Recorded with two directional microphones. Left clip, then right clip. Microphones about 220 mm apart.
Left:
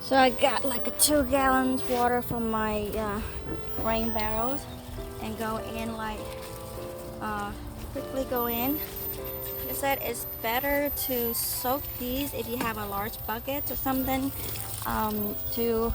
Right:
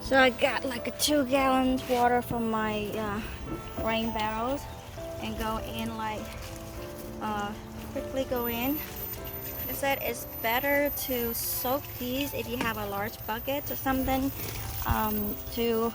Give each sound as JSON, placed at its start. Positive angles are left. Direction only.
{"t": 0.1, "sound": "speech", "side_deg": 30}
{"t": 7.2, "sound": "music", "side_deg": 20}
{"t": 8.1, "sound": "speech", "side_deg": 20}
{"t": 9.8, "sound": "speech", "side_deg": 15}